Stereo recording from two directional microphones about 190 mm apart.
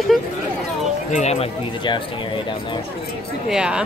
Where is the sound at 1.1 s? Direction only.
35° left (ahead or behind).